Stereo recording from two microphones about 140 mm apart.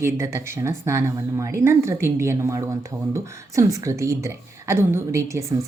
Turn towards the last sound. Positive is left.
turn(degrees=-20)  # may be behind; listen again after turning